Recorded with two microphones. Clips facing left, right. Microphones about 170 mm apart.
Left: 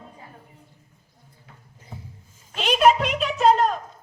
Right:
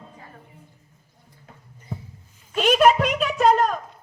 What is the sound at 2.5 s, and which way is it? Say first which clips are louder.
A woman's voice: right 2 dB; 50° right (ahead or behind).